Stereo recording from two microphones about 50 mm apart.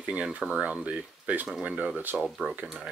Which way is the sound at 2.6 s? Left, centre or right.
Centre.